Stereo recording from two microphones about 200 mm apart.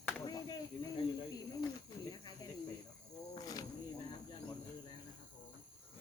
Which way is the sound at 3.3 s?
20° left (ahead or behind).